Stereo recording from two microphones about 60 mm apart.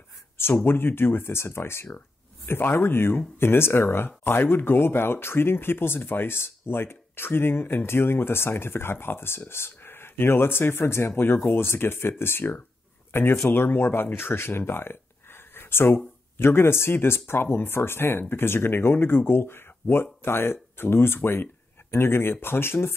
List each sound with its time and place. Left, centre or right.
0.7 s speech: left